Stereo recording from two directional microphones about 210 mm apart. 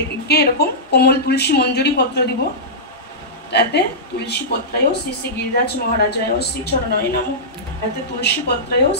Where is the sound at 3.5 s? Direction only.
55° left (ahead or behind).